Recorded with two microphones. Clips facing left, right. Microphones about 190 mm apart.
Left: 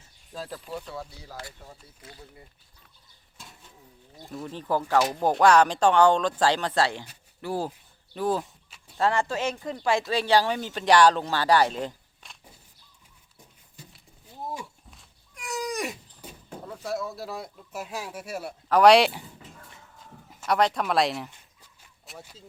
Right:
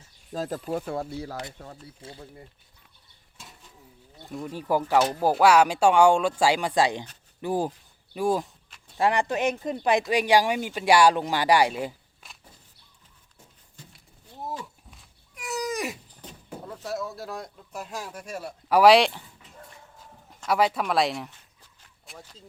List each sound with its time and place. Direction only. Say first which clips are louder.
0.3 s speech: right 7 dB; 45° right (ahead or behind)
2.0 s speech: right 4 dB; 30° right (ahead or behind)
4.3 s speech: right 2 dB; 5° right (ahead or behind)
14.8 s cat: even; centre (ahead or behind)
16.5 s speech: left 1 dB; 5° right (ahead or behind)
18.7 s speech: even; 5° right (ahead or behind)
20.3 s speech: even; centre (ahead or behind)
21.2 s a sound: even; 10° left (ahead or behind)
22.2 s speech: left 1 dB; 10° left (ahead or behind)